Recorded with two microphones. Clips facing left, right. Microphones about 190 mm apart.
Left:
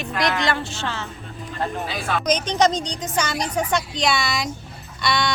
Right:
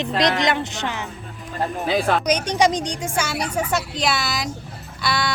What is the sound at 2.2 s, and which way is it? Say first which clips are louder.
A woman's voice: even; 10° right (ahead or behind).